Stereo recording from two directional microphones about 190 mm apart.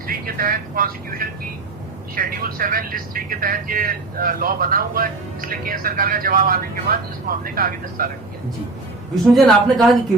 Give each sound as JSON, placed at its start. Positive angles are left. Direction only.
{"t": 0.1, "sound": "speech", "side_deg": -50}
{"t": 9.3, "sound": "a woman's voice", "side_deg": 0}